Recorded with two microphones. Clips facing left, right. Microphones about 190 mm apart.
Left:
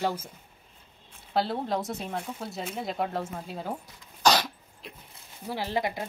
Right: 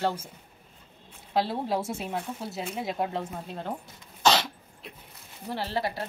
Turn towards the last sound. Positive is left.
turn(degrees=15)  # may be behind; listen again after turning